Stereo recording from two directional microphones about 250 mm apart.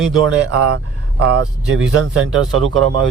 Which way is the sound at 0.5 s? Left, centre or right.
Right.